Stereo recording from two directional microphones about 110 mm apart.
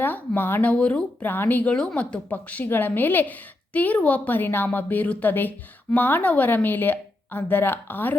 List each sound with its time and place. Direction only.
0.0 s speech: 15° left (ahead or behind)